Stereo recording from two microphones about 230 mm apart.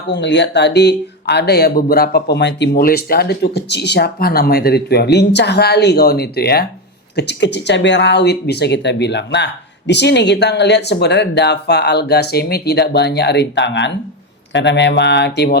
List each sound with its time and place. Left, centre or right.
0.1 s speech: left